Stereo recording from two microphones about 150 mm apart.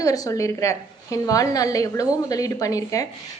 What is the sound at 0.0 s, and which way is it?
A woman's voice, 25° left (ahead or behind).